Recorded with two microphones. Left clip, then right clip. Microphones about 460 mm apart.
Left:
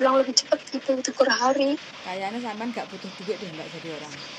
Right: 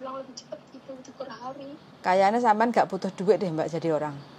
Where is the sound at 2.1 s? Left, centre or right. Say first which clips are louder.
Right 11 dB; right.